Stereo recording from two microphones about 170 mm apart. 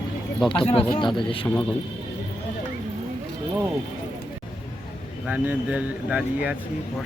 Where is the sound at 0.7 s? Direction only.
30° left (ahead or behind).